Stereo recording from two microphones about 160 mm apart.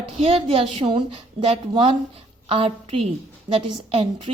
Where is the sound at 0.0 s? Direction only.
35° right (ahead or behind).